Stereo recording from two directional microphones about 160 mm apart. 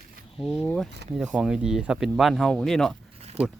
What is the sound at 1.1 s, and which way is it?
Speech, 5° right (ahead or behind).